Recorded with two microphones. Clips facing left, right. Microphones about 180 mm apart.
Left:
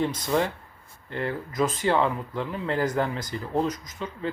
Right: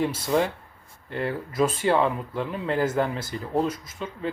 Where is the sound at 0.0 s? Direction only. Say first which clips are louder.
Right 1 dB; 10° right (ahead or behind).